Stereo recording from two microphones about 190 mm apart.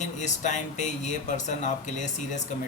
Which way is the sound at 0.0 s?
40° left (ahead or behind).